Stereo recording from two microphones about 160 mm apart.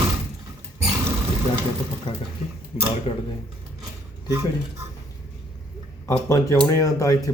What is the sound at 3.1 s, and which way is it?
Speech, 35° left (ahead or behind).